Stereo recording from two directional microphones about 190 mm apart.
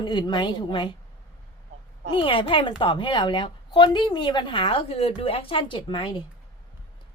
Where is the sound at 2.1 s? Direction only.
25° left (ahead or behind).